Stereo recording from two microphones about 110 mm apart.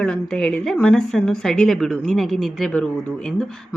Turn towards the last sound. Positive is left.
turn(degrees=5)  # may be behind; listen again after turning